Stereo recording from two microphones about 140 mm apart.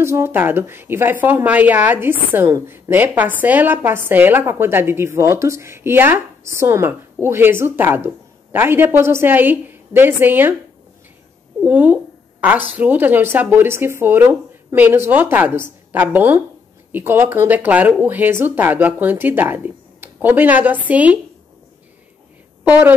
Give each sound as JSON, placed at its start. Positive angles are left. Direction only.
{"t": 0.0, "sound": "a woman's voice", "side_deg": -20}
{"t": 11.6, "sound": "a woman's voice", "side_deg": -10}
{"t": 22.7, "sound": "a woman's voice", "side_deg": -15}